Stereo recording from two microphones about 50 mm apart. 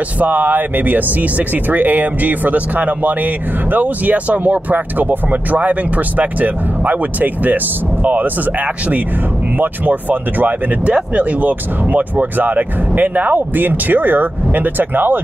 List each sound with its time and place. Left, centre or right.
0.2 s speech: right
9.6 s speech: right
10.9 s speech: right